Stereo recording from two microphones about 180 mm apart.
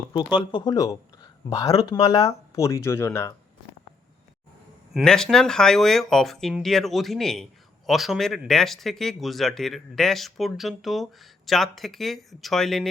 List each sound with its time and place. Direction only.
0.1 s speech: 25° left (ahead or behind)
4.9 s speech: 5° left (ahead or behind)